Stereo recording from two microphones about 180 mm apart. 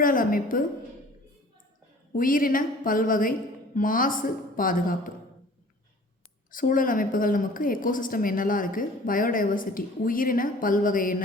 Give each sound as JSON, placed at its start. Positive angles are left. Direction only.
{"t": 0.0, "sound": "a woman's voice", "side_deg": 50}
{"t": 2.1, "sound": "a woman's voice", "side_deg": 50}
{"t": 6.5, "sound": "a woman's voice", "side_deg": 50}